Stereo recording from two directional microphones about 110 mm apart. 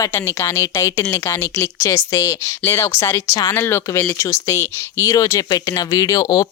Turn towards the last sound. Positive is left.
turn(degrees=30)  # may be behind; listen again after turning